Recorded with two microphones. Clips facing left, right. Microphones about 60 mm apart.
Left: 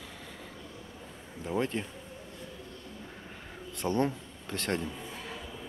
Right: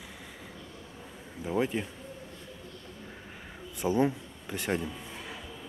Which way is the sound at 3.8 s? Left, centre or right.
Centre.